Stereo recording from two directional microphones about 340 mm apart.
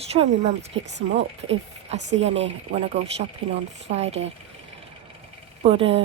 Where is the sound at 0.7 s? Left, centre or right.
Right.